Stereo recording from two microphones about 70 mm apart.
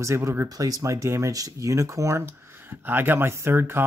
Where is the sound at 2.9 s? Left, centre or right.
Right.